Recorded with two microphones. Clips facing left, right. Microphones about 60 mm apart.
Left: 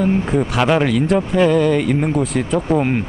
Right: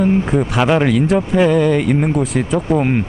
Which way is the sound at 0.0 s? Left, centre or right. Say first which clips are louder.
Right 2 dB; centre.